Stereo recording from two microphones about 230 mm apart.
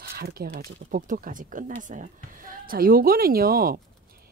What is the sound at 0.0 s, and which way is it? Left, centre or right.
Speech, right.